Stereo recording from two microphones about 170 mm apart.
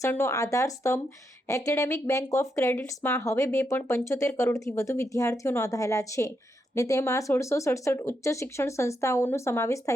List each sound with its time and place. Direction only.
0.0 s speech: 15° left (ahead or behind)